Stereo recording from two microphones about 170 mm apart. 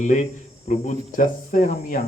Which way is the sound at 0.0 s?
45° left (ahead or behind).